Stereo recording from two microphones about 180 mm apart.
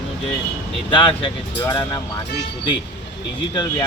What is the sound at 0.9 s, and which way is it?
Speech, 30° left (ahead or behind).